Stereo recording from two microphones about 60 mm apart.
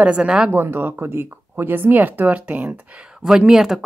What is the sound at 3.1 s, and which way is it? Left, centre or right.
Speech, centre.